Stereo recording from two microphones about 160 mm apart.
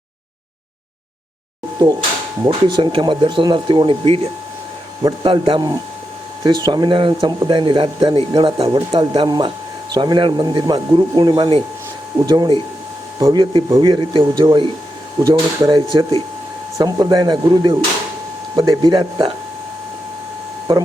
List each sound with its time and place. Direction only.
2.5 s speech: 30° right (ahead or behind)
20.7 s speech: 20° right (ahead or behind)